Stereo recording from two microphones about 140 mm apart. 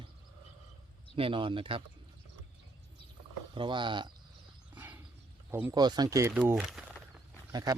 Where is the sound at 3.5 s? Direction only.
35° right (ahead or behind).